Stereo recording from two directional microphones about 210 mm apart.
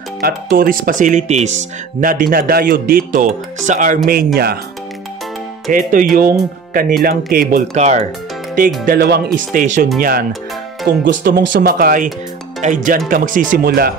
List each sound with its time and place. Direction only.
0.2 s speech: 40° right (ahead or behind)
5.7 s speech: 40° right (ahead or behind)
7.7 s speech: 35° right (ahead or behind)
8.8 s speech: 45° right (ahead or behind)
11.1 s speech: 55° right (ahead or behind)